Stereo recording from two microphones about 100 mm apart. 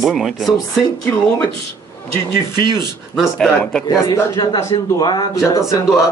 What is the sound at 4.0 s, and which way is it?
A man's voice, 40° left (ahead or behind).